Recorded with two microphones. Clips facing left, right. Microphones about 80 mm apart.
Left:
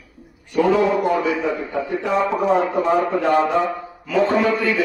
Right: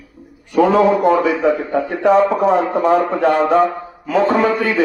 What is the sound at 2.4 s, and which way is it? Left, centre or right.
A man's voice, right.